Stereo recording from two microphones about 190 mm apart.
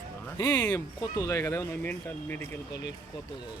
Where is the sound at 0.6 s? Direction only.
15° left (ahead or behind).